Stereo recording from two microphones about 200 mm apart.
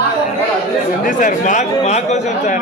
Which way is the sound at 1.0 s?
40° left (ahead or behind).